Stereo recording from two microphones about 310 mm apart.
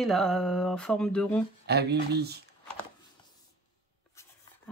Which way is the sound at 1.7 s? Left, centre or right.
Right.